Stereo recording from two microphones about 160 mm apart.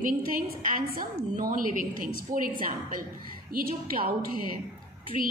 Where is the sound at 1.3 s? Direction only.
55° right (ahead or behind).